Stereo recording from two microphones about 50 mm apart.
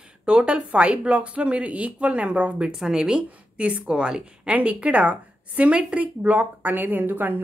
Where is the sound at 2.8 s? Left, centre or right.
Centre.